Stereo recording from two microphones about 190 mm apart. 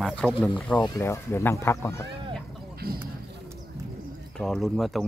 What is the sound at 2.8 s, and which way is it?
Speech, 50° right (ahead or behind).